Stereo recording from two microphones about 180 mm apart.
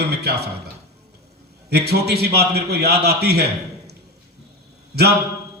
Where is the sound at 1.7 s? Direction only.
65° right (ahead or behind).